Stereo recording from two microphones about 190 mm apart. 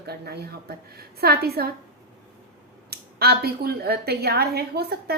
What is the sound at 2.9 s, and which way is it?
A woman's voice, 55° right (ahead or behind).